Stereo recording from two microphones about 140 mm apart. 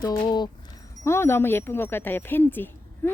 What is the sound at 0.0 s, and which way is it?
Speech, 30° left (ahead or behind).